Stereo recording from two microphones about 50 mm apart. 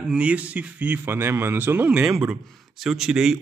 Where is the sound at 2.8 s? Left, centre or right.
Centre.